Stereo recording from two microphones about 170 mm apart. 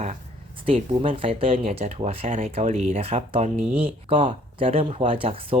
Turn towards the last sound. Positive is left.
turn(degrees=-35)  # may be behind; listen again after turning